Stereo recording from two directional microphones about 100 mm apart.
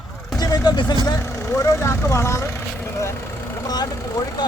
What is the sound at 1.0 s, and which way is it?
Speech, 35° left (ahead or behind).